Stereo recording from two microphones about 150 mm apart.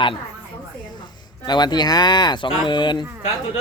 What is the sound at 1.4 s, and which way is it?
Speech, 30° left (ahead or behind).